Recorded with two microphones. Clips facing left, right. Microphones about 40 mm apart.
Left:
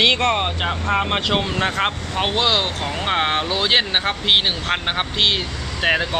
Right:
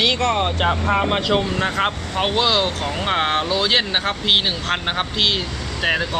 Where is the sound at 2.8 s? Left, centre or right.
Centre.